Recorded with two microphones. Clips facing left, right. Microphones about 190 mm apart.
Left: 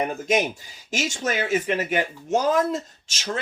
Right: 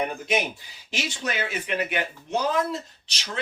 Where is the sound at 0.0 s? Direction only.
45° left (ahead or behind).